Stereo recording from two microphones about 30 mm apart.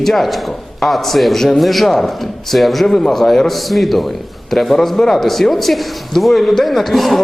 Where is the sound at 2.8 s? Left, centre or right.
Centre.